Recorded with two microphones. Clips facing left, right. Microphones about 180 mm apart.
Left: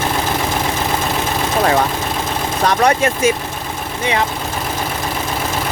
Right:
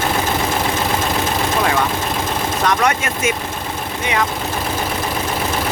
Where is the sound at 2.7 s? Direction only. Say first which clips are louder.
Left 5 dB; 35° left (ahead or behind).